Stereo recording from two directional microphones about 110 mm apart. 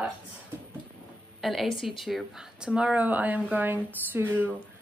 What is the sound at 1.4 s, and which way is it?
A woman's voice, centre (ahead or behind).